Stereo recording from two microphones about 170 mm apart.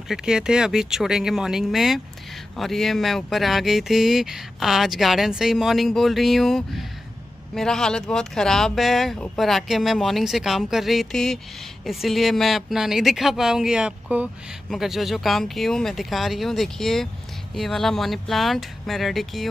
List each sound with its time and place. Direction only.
0.1 s speech: 5° right (ahead or behind)